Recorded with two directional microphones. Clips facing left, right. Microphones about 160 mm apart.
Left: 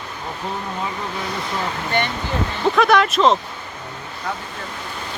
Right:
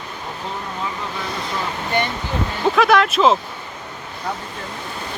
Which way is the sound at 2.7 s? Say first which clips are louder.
Even; centre (ahead or behind).